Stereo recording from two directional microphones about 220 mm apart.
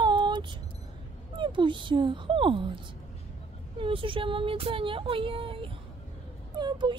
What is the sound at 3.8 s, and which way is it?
Speech, 25° right (ahead or behind).